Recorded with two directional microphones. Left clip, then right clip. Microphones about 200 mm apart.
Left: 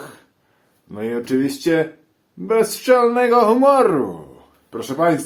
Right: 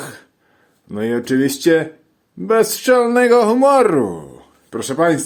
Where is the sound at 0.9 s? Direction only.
40° right (ahead or behind).